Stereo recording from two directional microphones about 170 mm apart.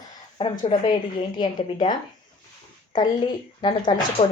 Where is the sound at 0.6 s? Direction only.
30° left (ahead or behind).